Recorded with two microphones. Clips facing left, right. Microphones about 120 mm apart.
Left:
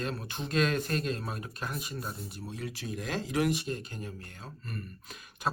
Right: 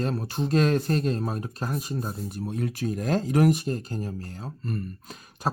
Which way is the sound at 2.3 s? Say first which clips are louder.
Right 9 dB; 50° right (ahead or behind).